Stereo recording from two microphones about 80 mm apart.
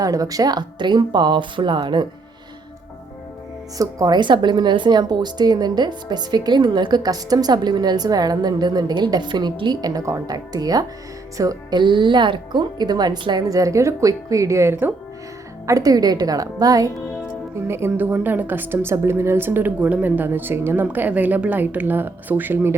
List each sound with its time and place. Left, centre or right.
0.0 s speech: right
3.8 s a woman's voice: right
4.2 s a woman's voice: right
11.7 s speech: right
13.6 s a woman's voice: right
15.6 s a woman's voice: right
17.5 s speech: right